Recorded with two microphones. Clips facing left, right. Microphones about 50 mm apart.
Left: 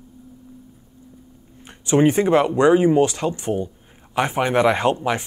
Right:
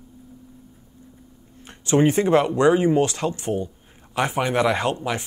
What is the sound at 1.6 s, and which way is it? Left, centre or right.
Speech, centre.